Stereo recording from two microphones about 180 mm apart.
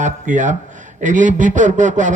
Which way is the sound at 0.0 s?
45° right (ahead or behind).